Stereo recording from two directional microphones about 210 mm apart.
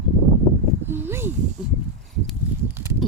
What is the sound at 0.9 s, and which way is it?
Speech, 10° right (ahead or behind).